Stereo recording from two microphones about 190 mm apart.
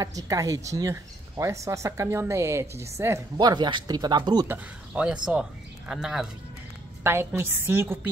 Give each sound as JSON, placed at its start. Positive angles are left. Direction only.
{"t": 0.0, "sound": "speech", "side_deg": -20}
{"t": 4.5, "sound": "speech", "side_deg": -5}